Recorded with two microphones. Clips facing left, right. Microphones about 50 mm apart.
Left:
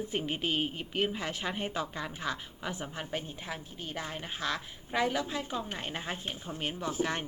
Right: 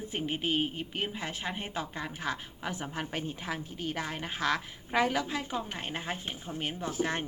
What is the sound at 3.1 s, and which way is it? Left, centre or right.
Speech, right.